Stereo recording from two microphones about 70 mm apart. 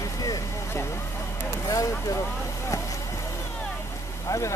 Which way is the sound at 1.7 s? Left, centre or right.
Left.